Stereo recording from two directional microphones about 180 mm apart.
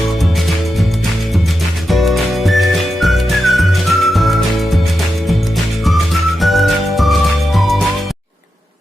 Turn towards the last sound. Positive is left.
turn(degrees=0)  # may be behind; listen again after turning